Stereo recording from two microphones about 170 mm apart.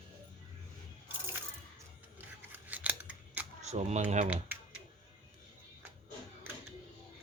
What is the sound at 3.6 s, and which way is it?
Speech, 40° right (ahead or behind).